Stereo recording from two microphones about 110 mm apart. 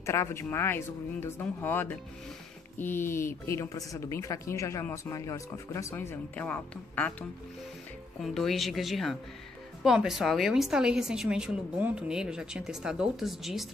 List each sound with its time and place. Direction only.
0.0 s speech: 25° left (ahead or behind)
8.2 s a woman's voice: centre (ahead or behind)